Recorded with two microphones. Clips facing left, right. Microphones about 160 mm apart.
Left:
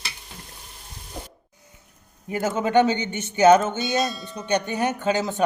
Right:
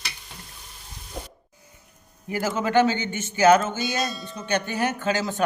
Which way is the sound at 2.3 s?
20° left (ahead or behind).